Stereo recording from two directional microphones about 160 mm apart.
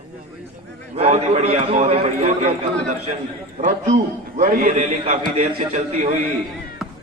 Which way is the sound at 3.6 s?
55° right (ahead or behind).